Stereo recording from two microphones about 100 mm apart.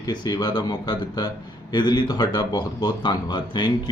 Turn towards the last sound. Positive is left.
turn(degrees=50)  # may be behind; listen again after turning